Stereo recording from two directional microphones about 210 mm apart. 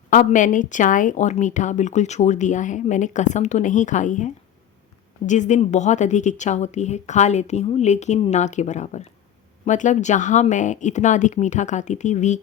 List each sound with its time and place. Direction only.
0.1 s speech: 40° left (ahead or behind)